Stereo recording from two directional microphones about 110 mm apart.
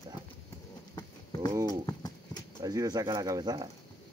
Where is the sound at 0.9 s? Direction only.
35° left (ahead or behind).